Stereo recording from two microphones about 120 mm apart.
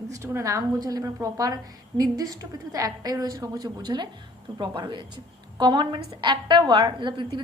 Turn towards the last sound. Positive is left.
turn(degrees=-40)  # may be behind; listen again after turning